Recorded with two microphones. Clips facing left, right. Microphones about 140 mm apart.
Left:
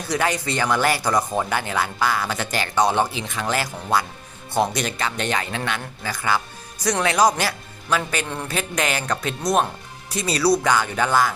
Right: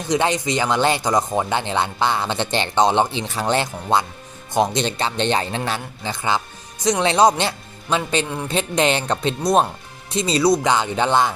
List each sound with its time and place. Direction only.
0.1 s speech: 20° right (ahead or behind)